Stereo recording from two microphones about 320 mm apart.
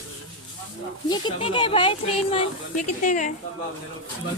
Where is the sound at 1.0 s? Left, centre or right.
Centre.